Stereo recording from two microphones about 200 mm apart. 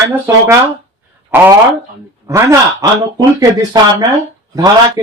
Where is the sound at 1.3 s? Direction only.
10° right (ahead or behind).